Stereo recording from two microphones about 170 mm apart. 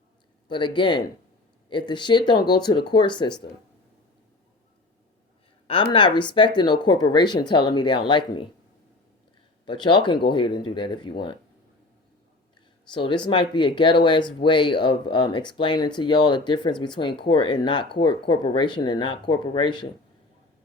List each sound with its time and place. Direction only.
0.4 s speech: 25° left (ahead or behind)
5.6 s speech: 30° left (ahead or behind)
9.6 s speech: 25° left (ahead or behind)
12.9 s speech: 30° left (ahead or behind)